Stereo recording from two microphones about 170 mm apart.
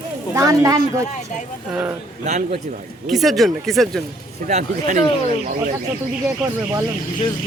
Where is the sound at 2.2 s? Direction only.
45° right (ahead or behind).